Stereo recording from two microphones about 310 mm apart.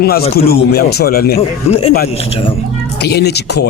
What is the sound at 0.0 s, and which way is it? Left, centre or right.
A man's voice, left.